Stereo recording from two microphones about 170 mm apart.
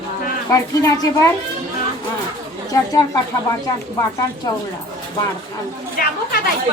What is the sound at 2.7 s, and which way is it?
Speech, 20° left (ahead or behind).